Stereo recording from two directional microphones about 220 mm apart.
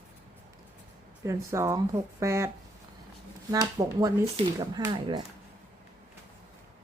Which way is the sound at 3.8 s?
20° right (ahead or behind).